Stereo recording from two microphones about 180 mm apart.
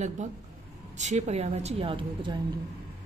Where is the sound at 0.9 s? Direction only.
40° right (ahead or behind).